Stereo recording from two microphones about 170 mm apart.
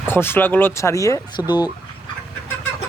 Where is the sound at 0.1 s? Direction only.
15° left (ahead or behind).